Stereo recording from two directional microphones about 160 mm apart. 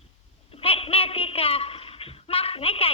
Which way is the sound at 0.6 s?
35° left (ahead or behind).